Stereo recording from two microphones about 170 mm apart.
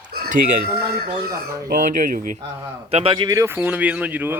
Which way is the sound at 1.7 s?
50° right (ahead or behind).